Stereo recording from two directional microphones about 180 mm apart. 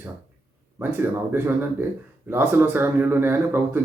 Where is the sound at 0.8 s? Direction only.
10° right (ahead or behind).